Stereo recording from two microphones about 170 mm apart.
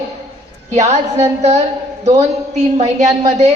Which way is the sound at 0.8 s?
40° right (ahead or behind).